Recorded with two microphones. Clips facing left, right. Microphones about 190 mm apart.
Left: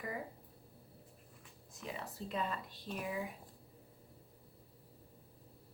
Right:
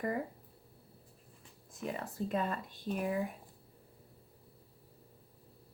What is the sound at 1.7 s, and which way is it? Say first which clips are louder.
Speech: right 6 dB; 50° right (ahead or behind).